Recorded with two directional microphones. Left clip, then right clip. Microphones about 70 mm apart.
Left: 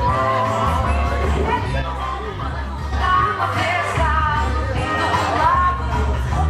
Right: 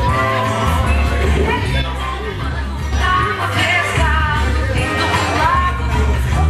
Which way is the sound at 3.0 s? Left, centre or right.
Right.